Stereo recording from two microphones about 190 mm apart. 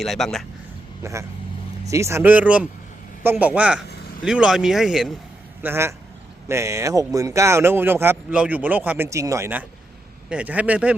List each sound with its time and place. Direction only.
0.0 s speech: centre (ahead or behind)
1.0 s speech: 15° right (ahead or behind)
5.6 s speech: 15° right (ahead or behind)